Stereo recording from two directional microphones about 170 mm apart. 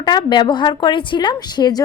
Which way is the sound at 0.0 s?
25° left (ahead or behind).